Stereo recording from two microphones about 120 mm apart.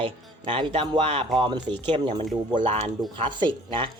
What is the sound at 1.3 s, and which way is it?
Speech, 40° right (ahead or behind).